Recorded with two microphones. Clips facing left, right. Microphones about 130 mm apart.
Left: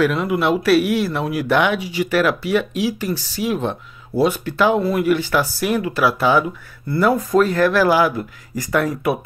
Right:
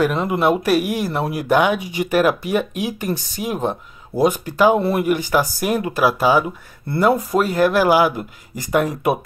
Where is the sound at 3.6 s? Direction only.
10° right (ahead or behind).